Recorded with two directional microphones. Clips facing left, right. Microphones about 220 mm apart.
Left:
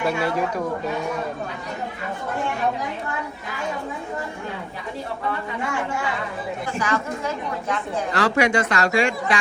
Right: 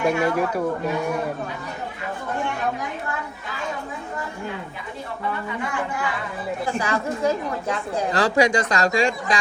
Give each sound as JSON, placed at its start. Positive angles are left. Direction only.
{"t": 0.0, "sound": "a man's voice", "side_deg": -10}
{"t": 6.8, "sound": "a woman's voice", "side_deg": -35}